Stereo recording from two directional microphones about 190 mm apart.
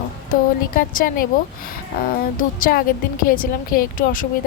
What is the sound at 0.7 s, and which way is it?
Speech, 50° left (ahead or behind).